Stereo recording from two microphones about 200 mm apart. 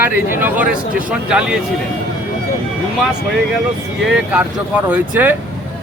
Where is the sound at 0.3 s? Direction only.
10° right (ahead or behind).